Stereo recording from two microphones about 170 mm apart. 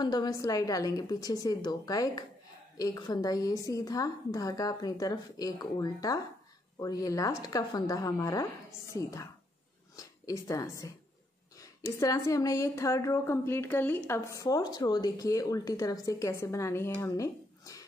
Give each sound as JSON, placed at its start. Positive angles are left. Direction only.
{"t": 0.0, "sound": "a woman's voice", "side_deg": 25}